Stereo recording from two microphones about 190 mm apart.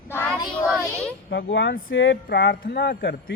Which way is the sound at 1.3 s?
70° left (ahead or behind).